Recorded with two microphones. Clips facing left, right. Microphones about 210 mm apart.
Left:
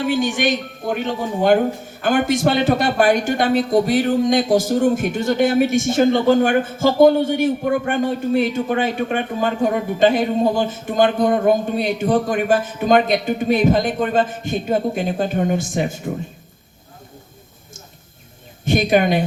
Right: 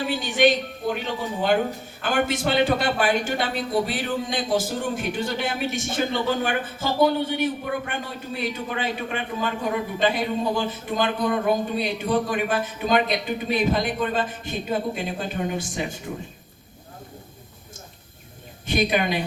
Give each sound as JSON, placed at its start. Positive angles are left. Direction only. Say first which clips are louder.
{"t": 0.1, "sound": "speech", "louder": "right 1 dB", "side_deg": 45}
{"t": 18.6, "sound": "speech", "louder": "left 6 dB", "side_deg": 45}